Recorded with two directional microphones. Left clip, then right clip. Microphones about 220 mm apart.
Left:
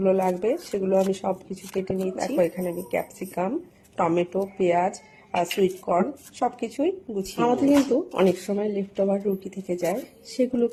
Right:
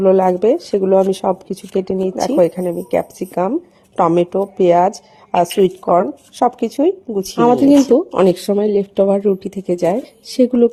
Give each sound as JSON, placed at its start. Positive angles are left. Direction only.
{"t": 0.0, "sound": "speech", "side_deg": -40}